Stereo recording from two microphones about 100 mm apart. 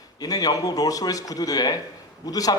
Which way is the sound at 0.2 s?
40° left (ahead or behind).